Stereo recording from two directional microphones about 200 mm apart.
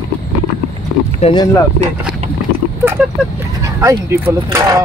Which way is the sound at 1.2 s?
25° left (ahead or behind).